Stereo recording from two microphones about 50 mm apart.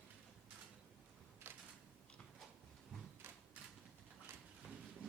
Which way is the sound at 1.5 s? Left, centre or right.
Right.